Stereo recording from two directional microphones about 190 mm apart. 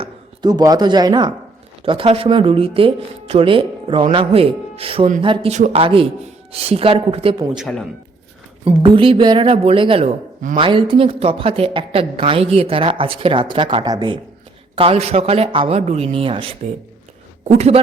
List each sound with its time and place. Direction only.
0.0 s a man's voice: 20° right (ahead or behind)
7.5 s a man's voice: centre (ahead or behind)
8.6 s a man's voice: 30° right (ahead or behind)
17.5 s a man's voice: 35° right (ahead or behind)